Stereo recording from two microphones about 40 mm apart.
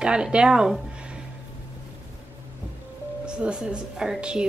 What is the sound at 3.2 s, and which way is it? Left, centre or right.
Speech, right.